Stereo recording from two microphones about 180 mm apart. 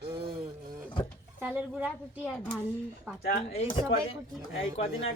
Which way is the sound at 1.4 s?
10° right (ahead or behind).